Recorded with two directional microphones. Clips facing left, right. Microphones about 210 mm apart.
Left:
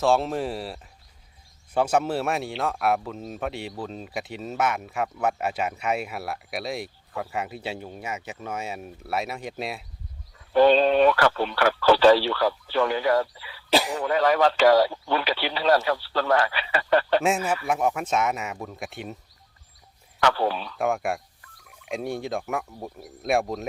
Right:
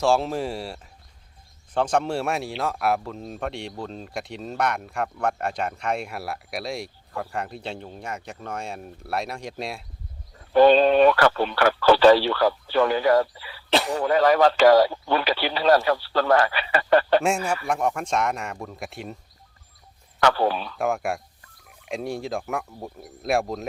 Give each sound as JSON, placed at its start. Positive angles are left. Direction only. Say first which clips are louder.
{"t": 0.0, "sound": "speech", "louder": "even", "side_deg": 0}
{"t": 10.3, "sound": "a man's voice", "louder": "right 2 dB", "side_deg": -50}
{"t": 17.2, "sound": "speech", "louder": "even", "side_deg": 5}
{"t": 20.2, "sound": "a man's voice", "louder": "right 2 dB", "side_deg": -45}
{"t": 20.7, "sound": "speech", "louder": "even", "side_deg": 0}